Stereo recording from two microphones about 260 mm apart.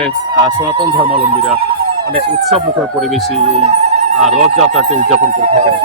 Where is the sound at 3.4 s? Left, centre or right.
Right.